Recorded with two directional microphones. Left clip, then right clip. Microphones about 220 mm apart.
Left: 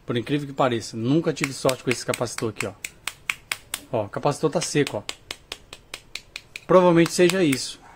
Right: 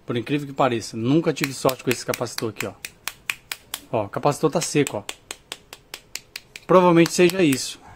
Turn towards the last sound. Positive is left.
turn(degrees=-10)  # may be behind; listen again after turning